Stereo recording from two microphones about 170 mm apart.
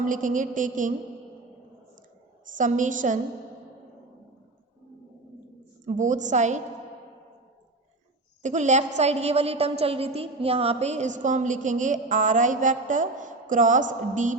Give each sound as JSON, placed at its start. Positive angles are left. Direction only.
{"t": 0.0, "sound": "a woman's voice", "side_deg": -50}
{"t": 2.5, "sound": "a woman's voice", "side_deg": -50}
{"t": 5.8, "sound": "a woman's voice", "side_deg": -45}
{"t": 8.4, "sound": "a woman's voice", "side_deg": -45}